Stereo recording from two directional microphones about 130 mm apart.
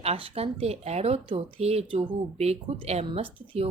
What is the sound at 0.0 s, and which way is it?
Speech, 50° right (ahead or behind).